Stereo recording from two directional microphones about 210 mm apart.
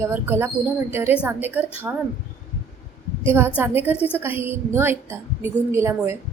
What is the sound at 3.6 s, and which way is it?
A woman's voice, 10° right (ahead or behind).